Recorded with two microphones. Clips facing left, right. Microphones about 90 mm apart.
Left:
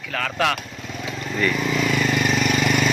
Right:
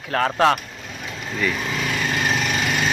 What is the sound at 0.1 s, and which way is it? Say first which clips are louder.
Speech: right 5 dB; 35° right (ahead or behind).